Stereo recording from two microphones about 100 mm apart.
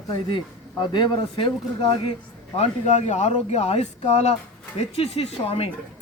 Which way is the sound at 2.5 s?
90° left.